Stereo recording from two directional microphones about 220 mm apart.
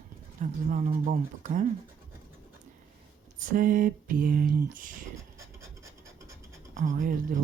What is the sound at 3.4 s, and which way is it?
Speech, 40° right (ahead or behind).